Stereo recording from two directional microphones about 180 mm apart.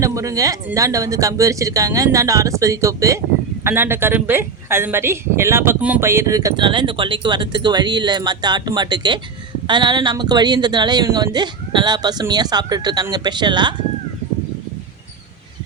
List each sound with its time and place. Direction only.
0.0 s a woman's voice: 20° right (ahead or behind)